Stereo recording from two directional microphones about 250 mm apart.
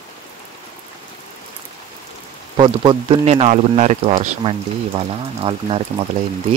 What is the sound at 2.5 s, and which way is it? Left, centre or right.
Speech, centre.